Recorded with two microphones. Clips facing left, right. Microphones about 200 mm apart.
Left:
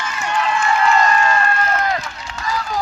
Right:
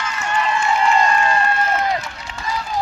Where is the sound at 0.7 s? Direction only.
10° right (ahead or behind).